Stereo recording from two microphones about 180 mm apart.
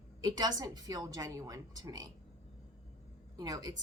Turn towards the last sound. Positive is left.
turn(degrees=-20)  # may be behind; listen again after turning